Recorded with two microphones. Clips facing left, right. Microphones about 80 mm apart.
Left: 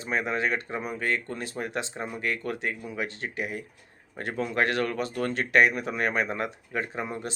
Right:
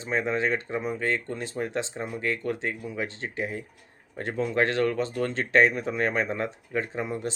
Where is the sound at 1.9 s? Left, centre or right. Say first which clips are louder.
Right 1 dB; left.